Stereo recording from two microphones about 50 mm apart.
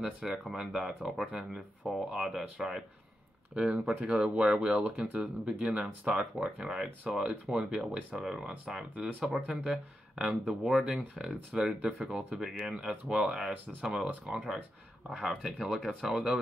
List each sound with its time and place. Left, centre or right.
0.0 s speech: centre
3.5 s speech: right
12.4 s speech: centre